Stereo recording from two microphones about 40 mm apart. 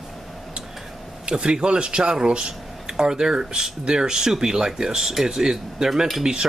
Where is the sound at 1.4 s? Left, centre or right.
Right.